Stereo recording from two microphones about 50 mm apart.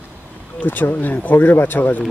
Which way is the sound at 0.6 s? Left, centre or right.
Left.